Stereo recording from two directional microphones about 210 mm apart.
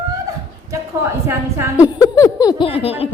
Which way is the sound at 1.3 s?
10° right (ahead or behind).